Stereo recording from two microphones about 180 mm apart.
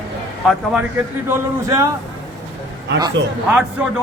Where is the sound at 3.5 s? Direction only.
5° right (ahead or behind).